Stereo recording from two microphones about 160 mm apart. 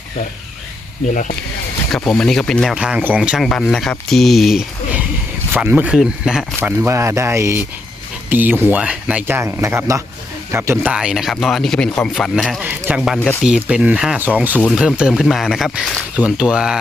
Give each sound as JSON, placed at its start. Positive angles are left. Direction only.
{"t": 1.1, "sound": "speech", "side_deg": 55}
{"t": 1.9, "sound": "speech", "side_deg": 5}
{"t": 2.7, "sound": "speech", "side_deg": -5}
{"t": 6.6, "sound": "speech", "side_deg": -15}